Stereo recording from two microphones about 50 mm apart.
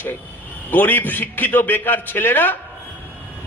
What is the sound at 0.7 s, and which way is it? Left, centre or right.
A man's voice, left.